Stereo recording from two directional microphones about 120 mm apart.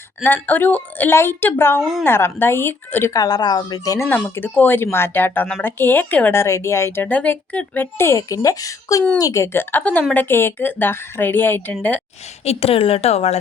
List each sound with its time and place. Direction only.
0.2 s speech: 15° left (ahead or behind)
1.8 s a woman's voice: centre (ahead or behind)
2.0 s a woman's voice: 20° left (ahead or behind)
3.2 s a woman's voice: 35° left (ahead or behind); by 12.0 s 10° left (ahead or behind)
12.5 s a woman's voice: 55° left (ahead or behind)